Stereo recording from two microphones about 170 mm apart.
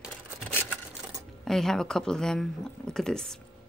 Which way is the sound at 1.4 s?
Centre (ahead or behind).